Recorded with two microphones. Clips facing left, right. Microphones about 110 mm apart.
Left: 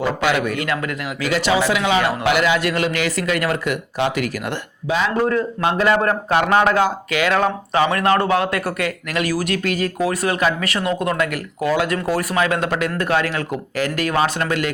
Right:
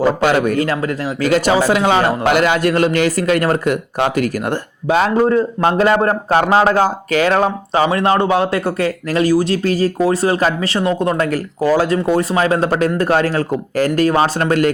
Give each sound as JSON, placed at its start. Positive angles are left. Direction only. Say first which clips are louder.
{"t": 0.0, "sound": "a man's voice", "louder": "right 5 dB", "side_deg": -40}
{"t": 1.2, "sound": "a man's voice", "louder": "right 4 dB", "side_deg": -45}
{"t": 5.1, "sound": "a man's voice", "louder": "right 5 dB", "side_deg": -25}
{"t": 5.5, "sound": "a man's voice", "louder": "right 4 dB", "side_deg": -40}